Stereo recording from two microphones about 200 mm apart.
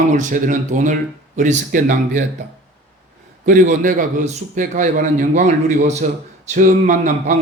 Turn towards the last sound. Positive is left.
turn(degrees=-40)  # may be behind; listen again after turning